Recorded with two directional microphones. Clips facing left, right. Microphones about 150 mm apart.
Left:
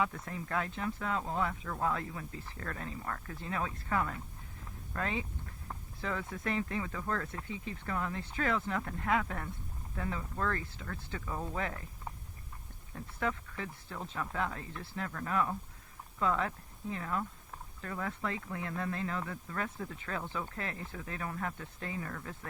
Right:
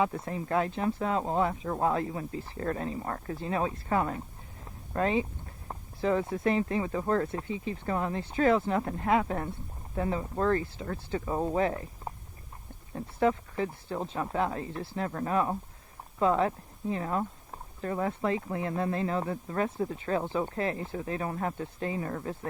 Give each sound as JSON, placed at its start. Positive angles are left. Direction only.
{"t": 0.0, "sound": "speech", "side_deg": -25}
{"t": 4.6, "sound": "a sound", "side_deg": -30}
{"t": 5.6, "sound": "speech", "side_deg": -30}